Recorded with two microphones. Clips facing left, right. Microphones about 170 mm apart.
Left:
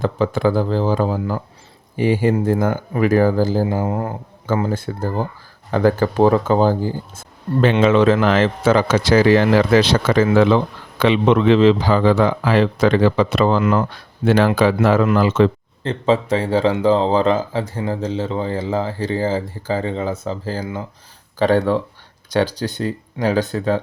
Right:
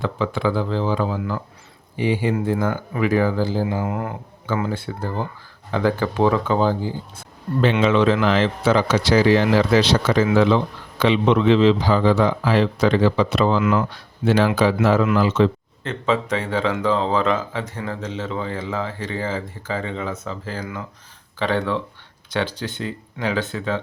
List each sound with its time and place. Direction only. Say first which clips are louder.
0.0 s a man's voice: left 4 dB; 45° left (ahead or behind)
13.6 s speech: left 2 dB; 40° left (ahead or behind)
14.3 s a man's voice: left 3 dB; 55° left (ahead or behind)
15.8 s speech: left 4 dB; 30° left (ahead or behind)
21.3 s speech: left 6 dB; 40° left (ahead or behind)